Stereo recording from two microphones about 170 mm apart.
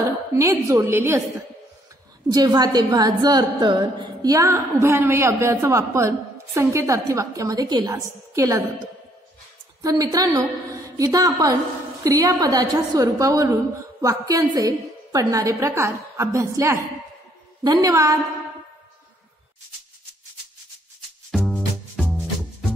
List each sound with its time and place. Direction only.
0.0 s a woman's voice: 15° right (ahead or behind)
2.2 s a woman's voice: 20° right (ahead or behind)
9.8 s a woman's voice: 20° right (ahead or behind)
21.3 s music: 5° left (ahead or behind)